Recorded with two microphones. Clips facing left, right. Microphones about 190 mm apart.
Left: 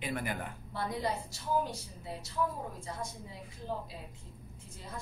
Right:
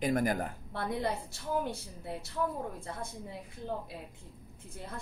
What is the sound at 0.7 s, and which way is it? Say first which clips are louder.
A woman's voice: even; 60° right (ahead or behind).